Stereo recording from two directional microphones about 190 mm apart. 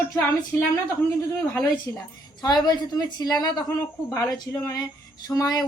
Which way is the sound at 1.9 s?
15° left (ahead or behind).